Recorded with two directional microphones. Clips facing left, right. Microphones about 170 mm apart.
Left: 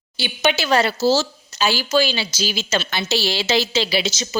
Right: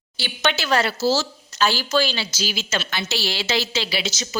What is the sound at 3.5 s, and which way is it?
Speech, 20° left (ahead or behind).